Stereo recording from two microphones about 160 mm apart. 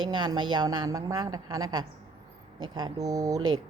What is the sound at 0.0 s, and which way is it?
A woman's voice, 30° right (ahead or behind).